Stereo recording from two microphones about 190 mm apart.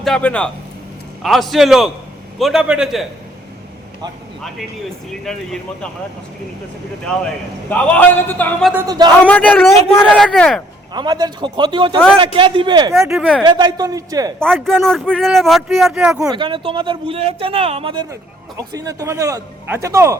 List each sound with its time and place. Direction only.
0.0 s speech: 5° left (ahead or behind)
5.2 s speech: 5° left (ahead or behind)
7.7 s speech: 10° left (ahead or behind)
8.9 s speech: 20° right (ahead or behind)
9.2 s speech: 5° left (ahead or behind)
10.9 s speech: 20° right (ahead or behind)
12.9 s speech: centre (ahead or behind)
13.4 s speech: 25° right (ahead or behind)
14.3 s speech: 5° left (ahead or behind)
16.3 s speech: 25° right (ahead or behind)
18.1 s a man's voice: 15° right (ahead or behind)